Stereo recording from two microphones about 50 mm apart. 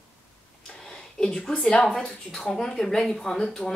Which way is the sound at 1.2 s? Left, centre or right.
Left.